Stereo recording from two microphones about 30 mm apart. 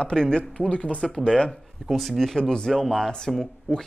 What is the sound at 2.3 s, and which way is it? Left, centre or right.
Speech, left.